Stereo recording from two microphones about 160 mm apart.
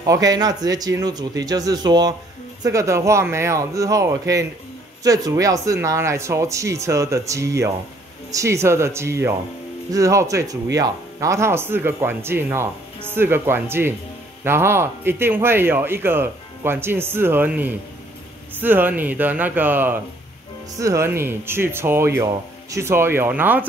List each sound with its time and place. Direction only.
0.0 s speech: 20° right (ahead or behind)